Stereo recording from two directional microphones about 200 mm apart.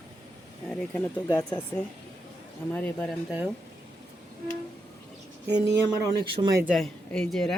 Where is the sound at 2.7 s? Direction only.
10° left (ahead or behind).